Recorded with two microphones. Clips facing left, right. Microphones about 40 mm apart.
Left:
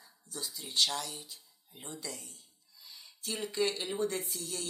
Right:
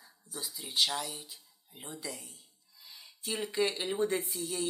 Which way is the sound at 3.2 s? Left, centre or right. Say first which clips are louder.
Right 2 dB; centre.